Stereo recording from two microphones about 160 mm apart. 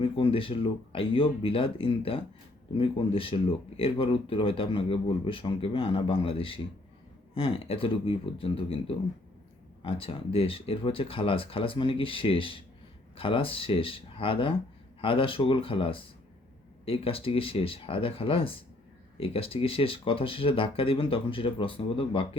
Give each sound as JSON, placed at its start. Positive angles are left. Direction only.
{"t": 0.0, "sound": "speech", "side_deg": 35}